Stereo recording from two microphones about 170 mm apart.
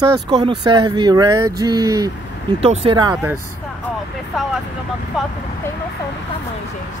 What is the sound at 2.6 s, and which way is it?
Speech, 35° right (ahead or behind).